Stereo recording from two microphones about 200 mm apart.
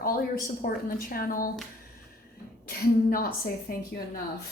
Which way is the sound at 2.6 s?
45° left (ahead or behind).